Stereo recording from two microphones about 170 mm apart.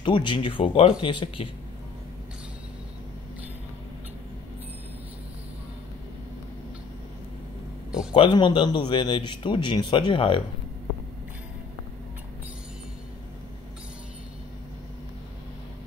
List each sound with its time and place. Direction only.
0.0 s speech: 30° left (ahead or behind)
8.1 s speech: 30° left (ahead or behind)